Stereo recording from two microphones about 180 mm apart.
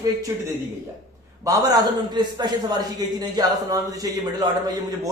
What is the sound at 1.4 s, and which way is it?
Speech, 20° right (ahead or behind).